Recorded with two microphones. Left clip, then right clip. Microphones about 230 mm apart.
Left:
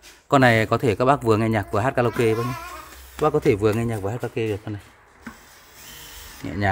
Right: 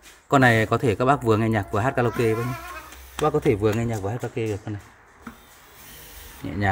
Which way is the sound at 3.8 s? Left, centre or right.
Centre.